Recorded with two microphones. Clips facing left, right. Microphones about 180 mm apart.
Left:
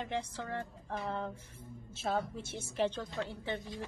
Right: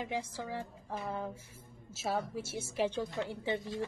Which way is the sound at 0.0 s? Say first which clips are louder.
Even; 5° right (ahead or behind).